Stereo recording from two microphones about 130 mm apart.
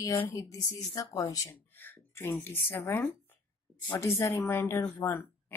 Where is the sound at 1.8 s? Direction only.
15° left (ahead or behind).